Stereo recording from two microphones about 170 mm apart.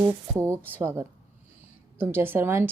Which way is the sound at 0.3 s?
15° right (ahead or behind).